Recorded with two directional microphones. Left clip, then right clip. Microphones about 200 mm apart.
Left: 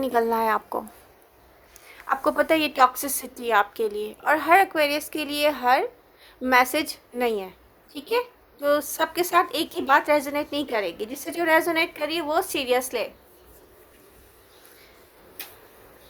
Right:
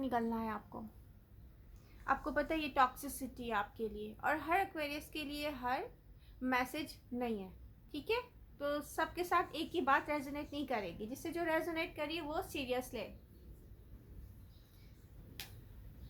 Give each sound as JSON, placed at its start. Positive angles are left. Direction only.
{"t": 0.0, "sound": "a woman's voice", "side_deg": 45}
{"t": 2.2, "sound": "a woman's voice", "side_deg": 50}
{"t": 8.6, "sound": "a woman's voice", "side_deg": 45}